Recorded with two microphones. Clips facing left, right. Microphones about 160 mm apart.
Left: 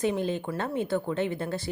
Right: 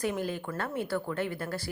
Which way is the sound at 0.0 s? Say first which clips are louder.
Left 4 dB; 20° left (ahead or behind).